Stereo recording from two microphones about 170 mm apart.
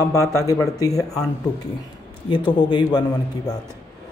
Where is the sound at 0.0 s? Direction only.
15° left (ahead or behind).